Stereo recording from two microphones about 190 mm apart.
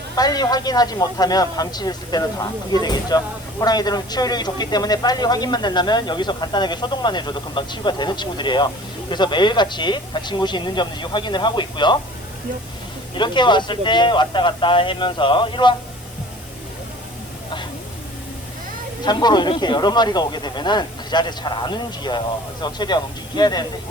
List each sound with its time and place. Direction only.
0.2 s speech: 20° left (ahead or behind)
13.1 s speech: 25° left (ahead or behind)
19.0 s speech: 20° left (ahead or behind)